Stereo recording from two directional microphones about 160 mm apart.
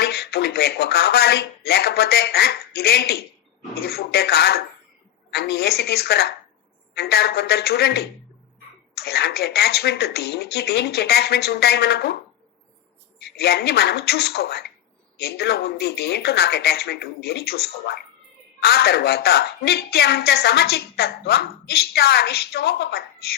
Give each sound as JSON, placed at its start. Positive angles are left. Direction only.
{"t": 0.0, "sound": "a woman's voice", "side_deg": 85}
{"t": 13.1, "sound": "a woman's voice", "side_deg": 90}